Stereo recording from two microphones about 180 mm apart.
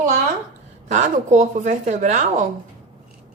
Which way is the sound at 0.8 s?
40° right (ahead or behind).